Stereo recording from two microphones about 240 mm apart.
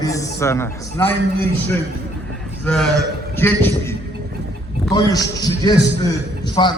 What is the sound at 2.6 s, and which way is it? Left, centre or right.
A man's voice, centre.